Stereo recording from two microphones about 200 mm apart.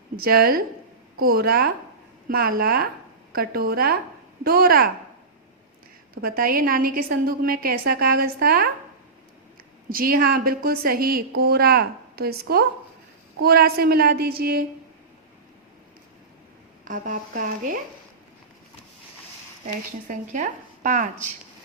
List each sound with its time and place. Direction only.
0.2 s a woman's voice: 50° right (ahead or behind)
6.2 s a woman's voice: 45° right (ahead or behind)
9.9 s a woman's voice: 45° right (ahead or behind)
16.8 s a woman's voice: 40° right (ahead or behind)
20.1 s a woman's voice: 40° right (ahead or behind)